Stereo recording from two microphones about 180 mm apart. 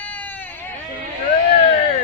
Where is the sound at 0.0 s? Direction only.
10° left (ahead or behind).